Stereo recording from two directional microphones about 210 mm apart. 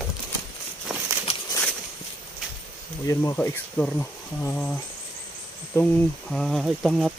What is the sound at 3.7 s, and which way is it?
Speech, 5° left (ahead or behind).